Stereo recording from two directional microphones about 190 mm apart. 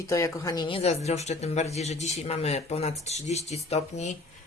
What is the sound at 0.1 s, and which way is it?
Speech, 15° left (ahead or behind).